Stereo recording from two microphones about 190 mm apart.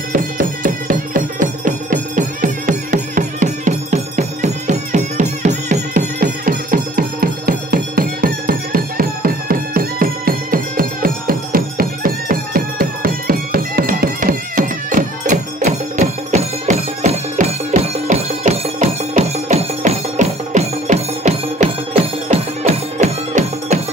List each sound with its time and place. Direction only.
0.1 s music: 45° right (ahead or behind)